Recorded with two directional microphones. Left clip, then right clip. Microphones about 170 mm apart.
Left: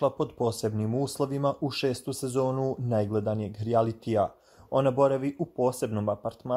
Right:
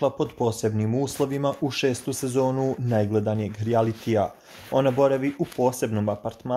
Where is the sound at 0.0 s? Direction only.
40° left (ahead or behind).